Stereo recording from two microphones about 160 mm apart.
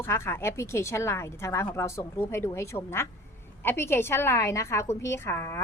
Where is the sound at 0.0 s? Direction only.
15° left (ahead or behind).